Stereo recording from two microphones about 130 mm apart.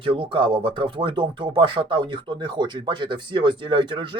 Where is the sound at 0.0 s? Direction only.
45° right (ahead or behind).